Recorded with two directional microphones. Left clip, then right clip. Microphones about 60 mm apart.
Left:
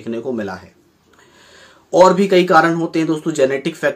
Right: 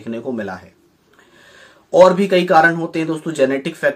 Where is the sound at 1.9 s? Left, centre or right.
Left.